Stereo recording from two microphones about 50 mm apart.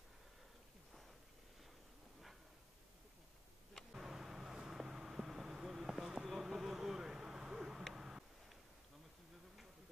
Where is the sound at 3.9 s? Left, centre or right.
Centre.